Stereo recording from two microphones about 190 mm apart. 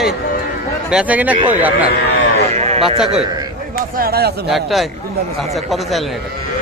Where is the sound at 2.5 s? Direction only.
35° right (ahead or behind).